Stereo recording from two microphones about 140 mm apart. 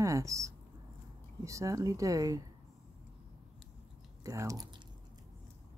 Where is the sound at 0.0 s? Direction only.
20° right (ahead or behind).